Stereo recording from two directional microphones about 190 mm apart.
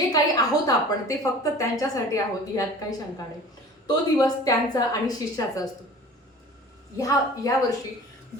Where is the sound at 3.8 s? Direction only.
20° left (ahead or behind).